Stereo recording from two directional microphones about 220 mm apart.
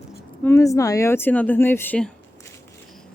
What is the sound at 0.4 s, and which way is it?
Speech, 15° left (ahead or behind).